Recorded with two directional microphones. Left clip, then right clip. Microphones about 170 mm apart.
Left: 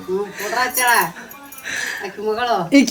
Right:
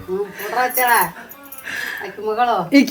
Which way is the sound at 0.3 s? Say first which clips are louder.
Right 2 dB; 5° right (ahead or behind).